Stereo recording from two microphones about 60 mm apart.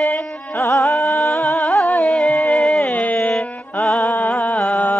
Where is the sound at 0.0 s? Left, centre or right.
Left.